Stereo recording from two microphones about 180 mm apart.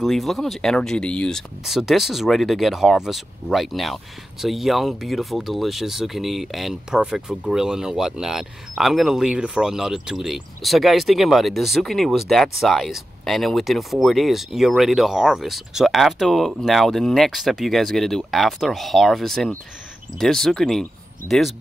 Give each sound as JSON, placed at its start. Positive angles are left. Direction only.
{"t": 0.0, "sound": "speech", "side_deg": 0}
{"t": 21.2, "sound": "speech", "side_deg": -15}